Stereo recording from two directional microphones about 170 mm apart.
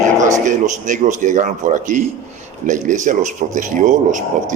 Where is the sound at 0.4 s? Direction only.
45° right (ahead or behind).